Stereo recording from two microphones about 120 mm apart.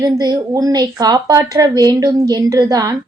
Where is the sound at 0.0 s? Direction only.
35° right (ahead or behind).